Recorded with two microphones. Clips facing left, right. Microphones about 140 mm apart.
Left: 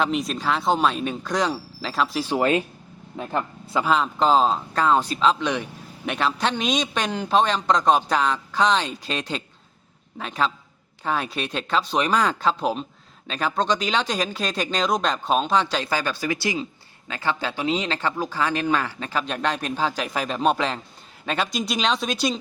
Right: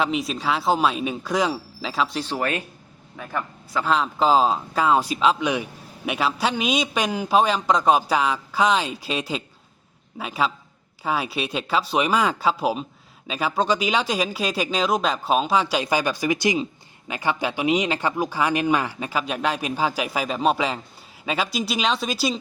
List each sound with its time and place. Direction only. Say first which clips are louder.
0.0 s speech: even; centre (ahead or behind)
2.3 s a man's voice: left 5 dB; 20° left (ahead or behind)
3.8 s speech: even; centre (ahead or behind)